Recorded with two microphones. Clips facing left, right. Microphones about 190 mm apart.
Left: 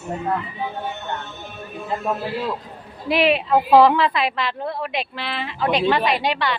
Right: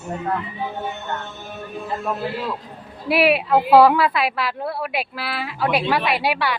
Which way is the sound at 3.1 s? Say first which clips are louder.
Right 1 dB; 5° right (ahead or behind).